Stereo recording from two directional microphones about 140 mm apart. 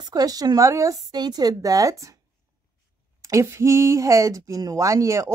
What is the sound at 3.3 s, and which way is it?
Speech, 20° right (ahead or behind).